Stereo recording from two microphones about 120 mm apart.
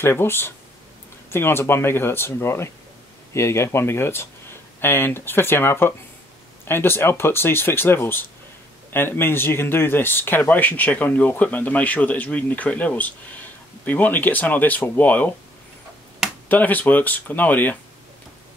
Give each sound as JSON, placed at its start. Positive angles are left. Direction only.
{"t": 0.0, "sound": "speech", "side_deg": 20}
{"t": 16.4, "sound": "speech", "side_deg": 15}